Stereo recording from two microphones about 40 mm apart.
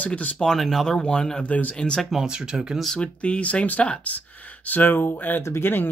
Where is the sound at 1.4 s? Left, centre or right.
Left.